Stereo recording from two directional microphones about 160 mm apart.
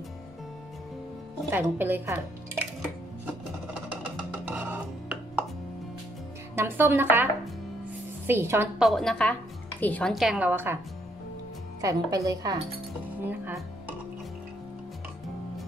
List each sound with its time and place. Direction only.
1.5 s speech: 10° right (ahead or behind)
4.0 s music: 10° right (ahead or behind)
6.5 s speech: 15° right (ahead or behind)
8.3 s a woman's voice: 15° right (ahead or behind)
8.7 s a woman's voice: centre (ahead or behind)
11.8 s a woman's voice: 20° right (ahead or behind)
13.3 s speech: 10° right (ahead or behind)